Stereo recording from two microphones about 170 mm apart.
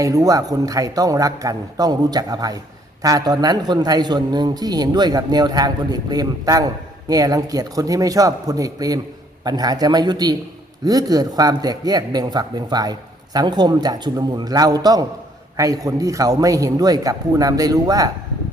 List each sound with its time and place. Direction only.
0.0 s speech: 20° right (ahead or behind)